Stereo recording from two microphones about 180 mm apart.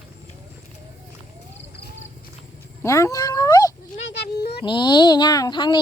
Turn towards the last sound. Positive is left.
turn(degrees=25)  # may be behind; listen again after turning